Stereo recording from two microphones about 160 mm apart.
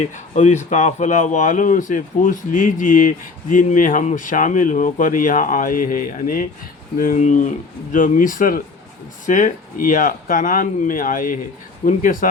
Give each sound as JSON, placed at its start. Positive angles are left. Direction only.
{"t": 0.0, "sound": "speech", "side_deg": 45}